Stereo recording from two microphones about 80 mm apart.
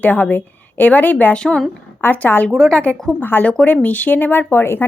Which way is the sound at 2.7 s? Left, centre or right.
Centre.